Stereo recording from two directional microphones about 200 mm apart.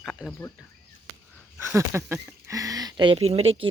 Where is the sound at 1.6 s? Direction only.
15° right (ahead or behind).